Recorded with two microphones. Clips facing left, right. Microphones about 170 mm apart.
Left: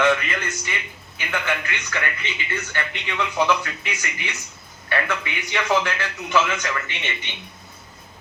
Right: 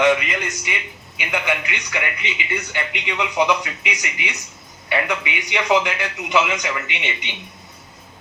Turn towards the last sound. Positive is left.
turn(degrees=-15)  # may be behind; listen again after turning